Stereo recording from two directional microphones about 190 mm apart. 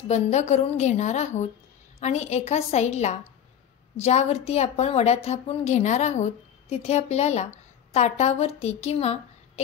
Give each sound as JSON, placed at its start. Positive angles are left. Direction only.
{"t": 0.1, "sound": "a woman's voice", "side_deg": 35}